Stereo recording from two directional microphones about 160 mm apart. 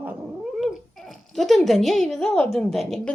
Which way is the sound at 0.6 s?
Centre (ahead or behind).